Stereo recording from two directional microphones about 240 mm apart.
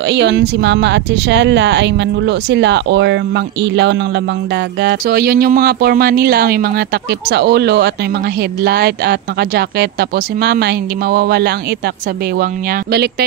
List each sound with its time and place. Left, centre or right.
0.0 s speech: right